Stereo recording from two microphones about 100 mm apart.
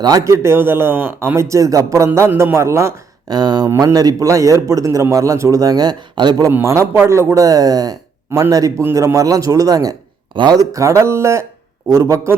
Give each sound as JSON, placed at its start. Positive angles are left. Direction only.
{"t": 0.0, "sound": "speech", "side_deg": -35}
{"t": 3.2, "sound": "speech", "side_deg": -45}
{"t": 3.7, "sound": "speech", "side_deg": -35}
{"t": 6.5, "sound": "speech", "side_deg": -25}
{"t": 10.3, "sound": "speech", "side_deg": -50}
{"t": 10.7, "sound": "speech", "side_deg": -30}